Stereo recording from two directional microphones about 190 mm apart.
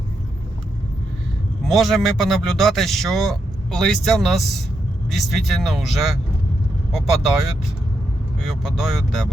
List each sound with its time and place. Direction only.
1.6 s a man's voice: centre (ahead or behind)